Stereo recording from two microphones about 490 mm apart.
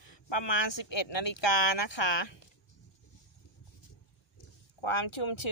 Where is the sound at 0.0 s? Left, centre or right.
Left.